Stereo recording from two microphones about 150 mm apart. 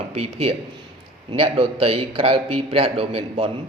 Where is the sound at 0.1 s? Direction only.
40° right (ahead or behind).